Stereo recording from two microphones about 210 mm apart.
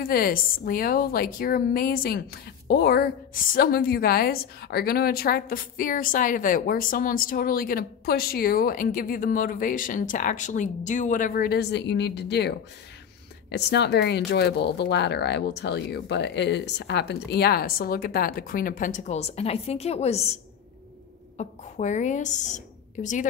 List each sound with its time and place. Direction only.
0.0 s a woman's voice: 45° left (ahead or behind)
21.4 s a woman's voice: 35° left (ahead or behind)